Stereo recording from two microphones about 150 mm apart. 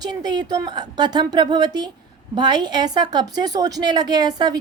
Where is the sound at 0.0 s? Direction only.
30° right (ahead or behind).